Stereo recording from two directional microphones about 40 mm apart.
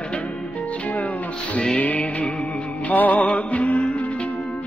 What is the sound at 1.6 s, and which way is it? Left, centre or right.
Music, left.